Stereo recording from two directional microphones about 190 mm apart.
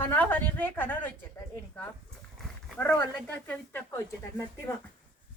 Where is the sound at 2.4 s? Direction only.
5° left (ahead or behind).